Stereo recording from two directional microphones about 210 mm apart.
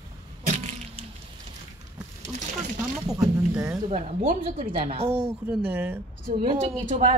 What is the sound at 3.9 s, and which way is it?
Speech, 25° right (ahead or behind).